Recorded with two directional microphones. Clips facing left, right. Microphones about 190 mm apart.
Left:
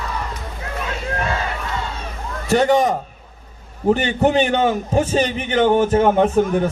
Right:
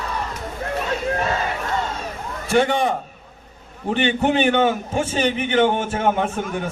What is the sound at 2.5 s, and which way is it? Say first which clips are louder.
Speech: left 3 dB; 40° left (ahead or behind).